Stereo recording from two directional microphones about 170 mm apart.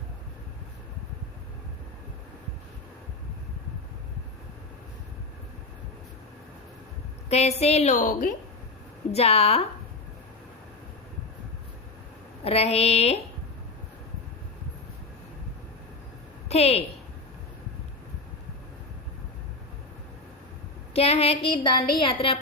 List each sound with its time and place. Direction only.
7.3 s a woman's voice: 40° left (ahead or behind)
9.1 s a woman's voice: 35° left (ahead or behind)
12.5 s a woman's voice: 35° left (ahead or behind)
16.5 s a woman's voice: 35° left (ahead or behind)
20.9 s a woman's voice: 35° left (ahead or behind)